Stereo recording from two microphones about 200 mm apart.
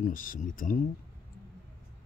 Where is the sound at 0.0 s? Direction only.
45° left (ahead or behind).